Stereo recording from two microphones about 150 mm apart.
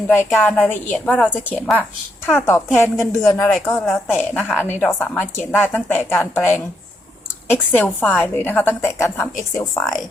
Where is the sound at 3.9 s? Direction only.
10° left (ahead or behind).